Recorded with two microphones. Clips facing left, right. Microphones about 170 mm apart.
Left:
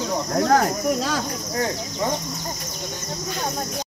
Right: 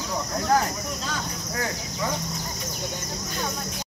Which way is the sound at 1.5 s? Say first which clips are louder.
Left 5 dB; 30° left (ahead or behind).